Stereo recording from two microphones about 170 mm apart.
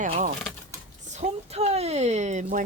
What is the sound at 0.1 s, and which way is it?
Speech, 40° right (ahead or behind).